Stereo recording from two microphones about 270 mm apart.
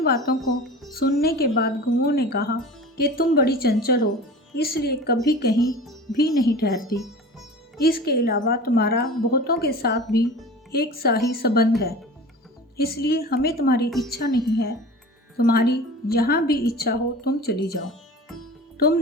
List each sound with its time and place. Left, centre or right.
0.6 s music: centre
0.9 s a woman's voice: left
5.8 s speech: centre
6.1 s a woman's voice: left
12.7 s a woman's voice: left